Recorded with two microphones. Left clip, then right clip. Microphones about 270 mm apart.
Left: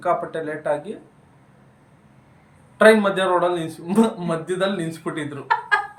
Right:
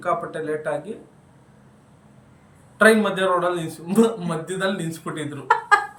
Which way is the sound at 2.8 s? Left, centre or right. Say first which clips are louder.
Left 2 dB; centre.